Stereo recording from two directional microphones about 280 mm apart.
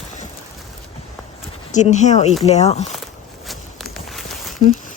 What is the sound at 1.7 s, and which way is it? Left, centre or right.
Speech, left.